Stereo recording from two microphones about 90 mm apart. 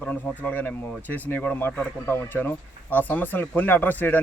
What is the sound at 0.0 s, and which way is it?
Speech, 15° left (ahead or behind).